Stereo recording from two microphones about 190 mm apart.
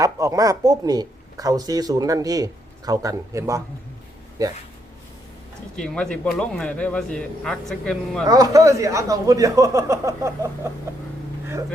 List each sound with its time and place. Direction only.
0.0 s speech: 15° right (ahead or behind)
5.7 s speech: 5° left (ahead or behind)
8.3 s speech: 20° right (ahead or behind)